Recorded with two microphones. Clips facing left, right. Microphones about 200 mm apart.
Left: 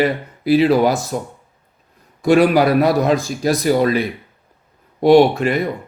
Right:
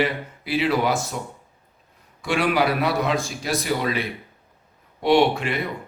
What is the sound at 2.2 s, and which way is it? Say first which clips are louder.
A man's voice: left 9 dB; 40° left (ahead or behind).